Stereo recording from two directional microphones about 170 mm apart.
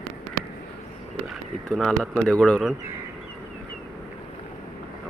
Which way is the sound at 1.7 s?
Centre (ahead or behind).